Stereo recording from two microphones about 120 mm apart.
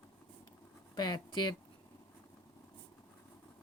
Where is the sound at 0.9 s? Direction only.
35° left (ahead or behind).